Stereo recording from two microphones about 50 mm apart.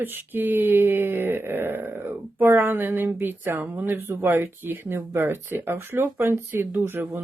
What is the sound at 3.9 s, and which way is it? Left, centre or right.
Speech, right.